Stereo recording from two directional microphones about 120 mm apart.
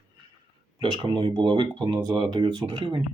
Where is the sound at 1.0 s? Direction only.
40° right (ahead or behind).